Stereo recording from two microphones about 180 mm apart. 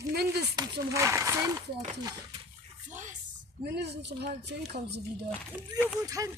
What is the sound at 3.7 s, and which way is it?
Speech, 65° right (ahead or behind).